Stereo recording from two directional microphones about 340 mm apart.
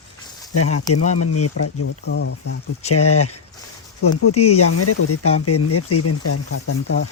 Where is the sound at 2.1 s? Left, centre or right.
Left.